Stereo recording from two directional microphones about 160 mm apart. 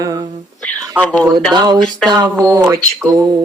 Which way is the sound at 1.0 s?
5° left (ahead or behind).